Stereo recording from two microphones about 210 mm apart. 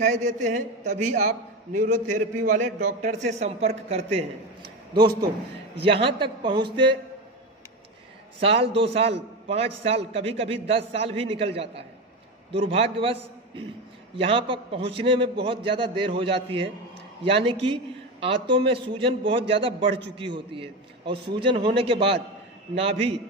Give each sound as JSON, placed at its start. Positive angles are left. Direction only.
{"t": 0.0, "sound": "a man's voice", "side_deg": -35}
{"t": 4.9, "sound": "a man's voice", "side_deg": -20}
{"t": 8.4, "sound": "a man's voice", "side_deg": -25}
{"t": 19.9, "sound": "a man's voice", "side_deg": -55}
{"t": 20.3, "sound": "a man's voice", "side_deg": -25}
{"t": 21.0, "sound": "a man's voice", "side_deg": -55}
{"t": 21.5, "sound": "a man's voice", "side_deg": -25}